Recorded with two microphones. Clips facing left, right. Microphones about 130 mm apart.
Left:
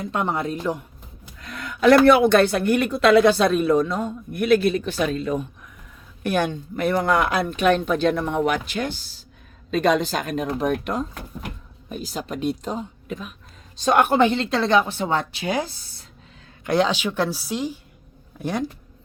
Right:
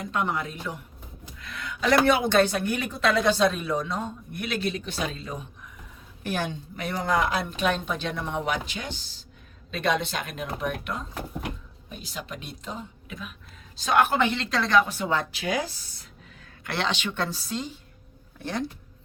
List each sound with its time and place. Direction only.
0.0 s a woman's voice: 30° left (ahead or behind)
1.4 s speech: 45° left (ahead or behind)
9.7 s a woman's voice: 40° left (ahead or behind)
16.6 s a woman's voice: 10° left (ahead or behind)